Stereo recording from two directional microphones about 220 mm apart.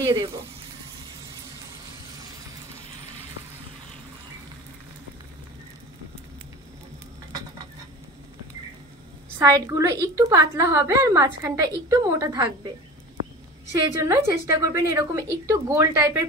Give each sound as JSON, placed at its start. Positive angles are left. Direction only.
{"t": 0.0, "sound": "speech", "side_deg": -15}
{"t": 9.4, "sound": "a woman's voice", "side_deg": -15}
{"t": 14.0, "sound": "a woman's voice", "side_deg": -10}